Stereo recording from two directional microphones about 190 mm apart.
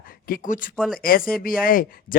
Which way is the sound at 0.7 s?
Centre (ahead or behind).